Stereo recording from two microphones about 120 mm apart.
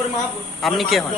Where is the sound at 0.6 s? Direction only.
Centre (ahead or behind).